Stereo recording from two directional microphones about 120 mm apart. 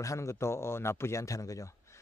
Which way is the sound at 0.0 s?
25° left (ahead or behind).